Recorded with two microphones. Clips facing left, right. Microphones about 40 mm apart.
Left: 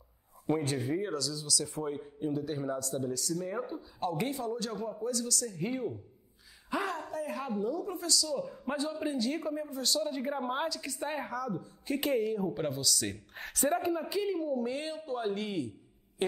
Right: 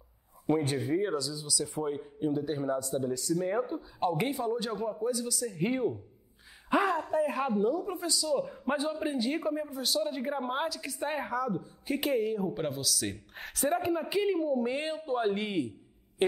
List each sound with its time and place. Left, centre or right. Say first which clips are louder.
0.9 s a woman's voice: right 3 dB; centre
4.1 s a woman's voice: right 2 dB; centre
5.6 s a man's voice: right 8 dB; right
7.7 s a man's voice: right 1 dB; centre
14.0 s a man's voice: right 4 dB; centre